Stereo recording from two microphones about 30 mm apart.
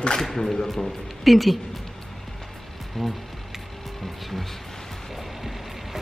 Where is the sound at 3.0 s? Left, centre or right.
Centre.